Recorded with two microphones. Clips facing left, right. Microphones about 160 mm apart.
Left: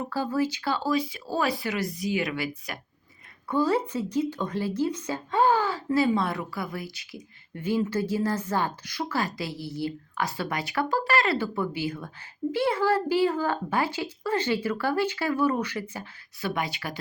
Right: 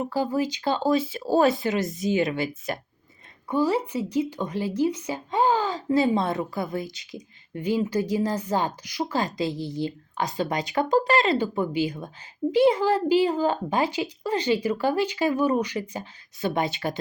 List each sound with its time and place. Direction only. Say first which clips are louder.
0.0 s speech: right 2 dB; 15° right (ahead or behind)
3.5 s speech: right 1 dB; 15° right (ahead or behind)